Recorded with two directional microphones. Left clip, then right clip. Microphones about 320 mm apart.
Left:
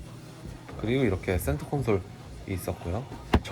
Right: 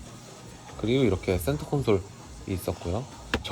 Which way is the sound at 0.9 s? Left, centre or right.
Centre.